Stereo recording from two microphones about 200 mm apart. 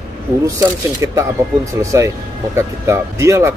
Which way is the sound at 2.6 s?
15° right (ahead or behind).